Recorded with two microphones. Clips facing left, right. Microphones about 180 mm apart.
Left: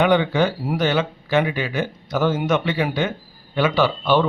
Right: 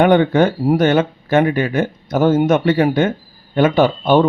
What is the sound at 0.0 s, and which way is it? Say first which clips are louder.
Speech: right 5 dB; 50° right (ahead or behind).